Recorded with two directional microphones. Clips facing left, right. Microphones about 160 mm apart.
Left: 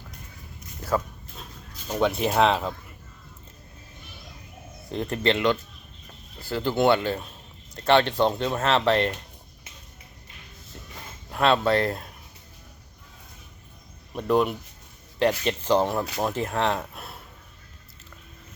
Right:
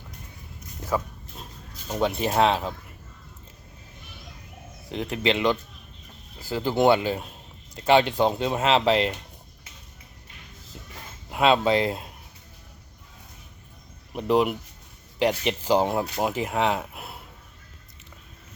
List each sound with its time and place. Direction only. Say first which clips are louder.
1.9 s speech: left 1 dB; centre (ahead or behind)
4.9 s speech: left 1 dB; 5° right (ahead or behind)
11.3 s speech: right 1 dB; 15° right (ahead or behind)
14.1 s speech: right 1 dB; 10° right (ahead or behind)